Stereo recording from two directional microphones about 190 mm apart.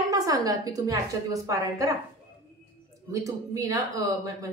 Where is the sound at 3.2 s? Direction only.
15° right (ahead or behind).